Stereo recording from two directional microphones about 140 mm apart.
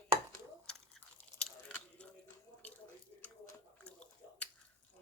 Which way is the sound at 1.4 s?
5° left (ahead or behind).